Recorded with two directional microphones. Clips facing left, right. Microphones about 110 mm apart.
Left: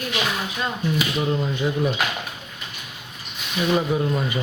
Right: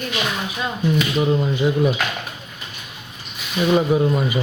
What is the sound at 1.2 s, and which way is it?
Speech, 10° right (ahead or behind).